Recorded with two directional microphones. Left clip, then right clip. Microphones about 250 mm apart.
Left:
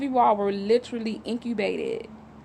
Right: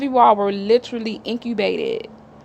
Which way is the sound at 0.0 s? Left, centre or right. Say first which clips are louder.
Right 7 dB; centre.